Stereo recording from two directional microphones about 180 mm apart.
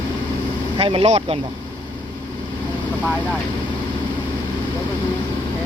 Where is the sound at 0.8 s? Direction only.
30° right (ahead or behind).